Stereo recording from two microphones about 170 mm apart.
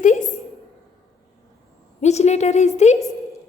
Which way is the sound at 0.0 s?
45° left (ahead or behind).